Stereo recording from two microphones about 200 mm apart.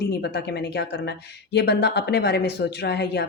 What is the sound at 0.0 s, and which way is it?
Speech, 55° left (ahead or behind).